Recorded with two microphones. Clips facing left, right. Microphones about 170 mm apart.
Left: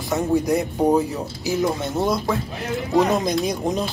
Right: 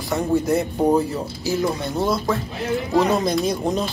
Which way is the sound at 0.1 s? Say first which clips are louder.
Even; 15° left (ahead or behind).